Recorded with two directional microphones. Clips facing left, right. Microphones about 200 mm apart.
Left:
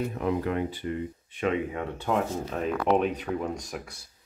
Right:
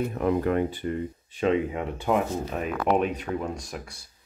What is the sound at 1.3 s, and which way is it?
Speech, 30° right (ahead or behind).